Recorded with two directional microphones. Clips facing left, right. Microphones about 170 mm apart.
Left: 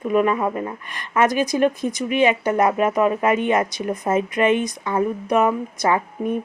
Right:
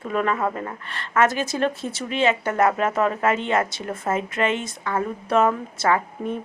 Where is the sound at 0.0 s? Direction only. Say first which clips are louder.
Left 4 dB; 15° left (ahead or behind).